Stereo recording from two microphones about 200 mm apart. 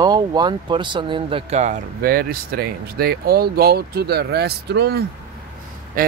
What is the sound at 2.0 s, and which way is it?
Speech, 50° right (ahead or behind).